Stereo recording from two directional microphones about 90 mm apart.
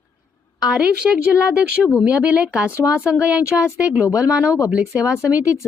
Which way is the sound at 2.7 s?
30° left (ahead or behind).